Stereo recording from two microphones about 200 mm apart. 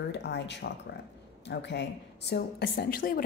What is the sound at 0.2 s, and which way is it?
A woman's voice, 60° left (ahead or behind).